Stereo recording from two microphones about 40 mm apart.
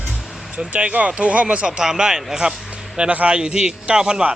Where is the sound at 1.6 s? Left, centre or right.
Centre.